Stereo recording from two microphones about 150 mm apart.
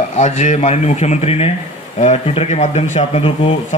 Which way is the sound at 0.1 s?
50° left (ahead or behind).